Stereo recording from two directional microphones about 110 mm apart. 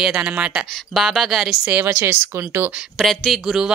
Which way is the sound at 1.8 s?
20° right (ahead or behind).